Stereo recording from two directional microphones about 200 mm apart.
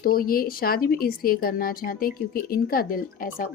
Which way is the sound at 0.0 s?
45° left (ahead or behind).